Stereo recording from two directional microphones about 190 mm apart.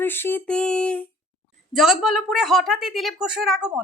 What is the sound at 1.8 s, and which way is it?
A woman's voice, centre (ahead or behind).